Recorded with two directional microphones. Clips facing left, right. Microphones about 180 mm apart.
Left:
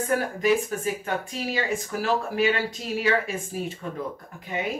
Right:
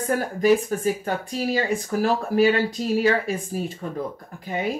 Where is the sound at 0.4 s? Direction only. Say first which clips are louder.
Right 4 dB; 40° right (ahead or behind).